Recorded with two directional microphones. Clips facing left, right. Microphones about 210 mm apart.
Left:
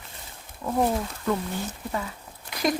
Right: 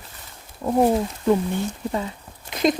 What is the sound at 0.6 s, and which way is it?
Speech, 30° right (ahead or behind).